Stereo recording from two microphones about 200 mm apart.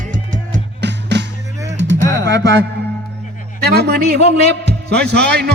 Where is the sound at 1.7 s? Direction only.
65° right (ahead or behind).